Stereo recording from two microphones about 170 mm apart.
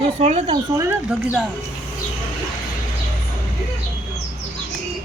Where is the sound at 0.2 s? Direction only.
40° right (ahead or behind).